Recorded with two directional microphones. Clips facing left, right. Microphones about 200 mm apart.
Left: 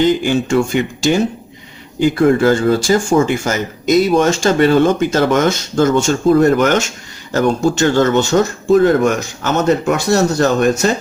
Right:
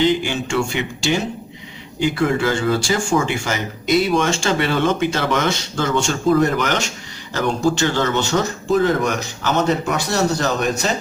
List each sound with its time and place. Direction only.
0.0 s speech: 45° left (ahead or behind)